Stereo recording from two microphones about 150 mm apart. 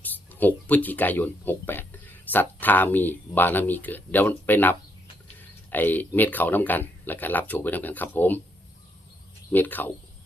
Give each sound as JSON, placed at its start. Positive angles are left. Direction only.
{"t": 0.3, "sound": "speech", "side_deg": 10}
{"t": 9.5, "sound": "speech", "side_deg": 10}